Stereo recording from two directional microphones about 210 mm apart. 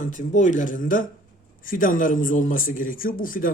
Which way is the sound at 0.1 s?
35° left (ahead or behind).